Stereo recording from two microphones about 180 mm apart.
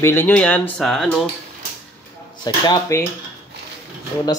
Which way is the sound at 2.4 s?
25° left (ahead or behind).